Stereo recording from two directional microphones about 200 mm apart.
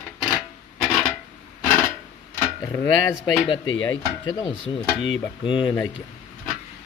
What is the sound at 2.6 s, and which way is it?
Speech, 15° left (ahead or behind).